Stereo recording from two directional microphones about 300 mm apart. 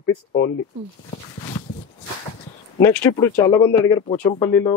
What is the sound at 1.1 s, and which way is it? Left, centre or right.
Speech, centre.